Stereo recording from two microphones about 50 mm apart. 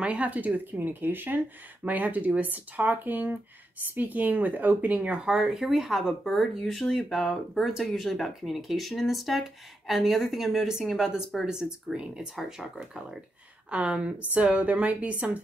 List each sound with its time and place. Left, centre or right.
0.0 s speech: right
1.9 s speech: right
5.4 s speech: centre
13.7 s a woman's voice: right